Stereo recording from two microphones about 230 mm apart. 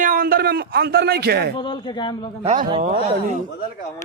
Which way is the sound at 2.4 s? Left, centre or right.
Right.